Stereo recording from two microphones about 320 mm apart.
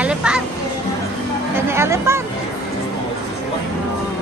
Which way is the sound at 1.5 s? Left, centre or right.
Centre.